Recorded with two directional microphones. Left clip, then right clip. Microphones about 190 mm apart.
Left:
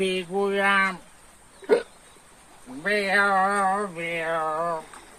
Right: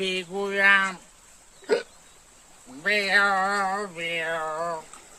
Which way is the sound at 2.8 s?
10° right (ahead or behind).